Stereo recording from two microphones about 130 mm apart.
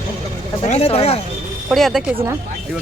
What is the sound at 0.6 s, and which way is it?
Speech, 55° left (ahead or behind).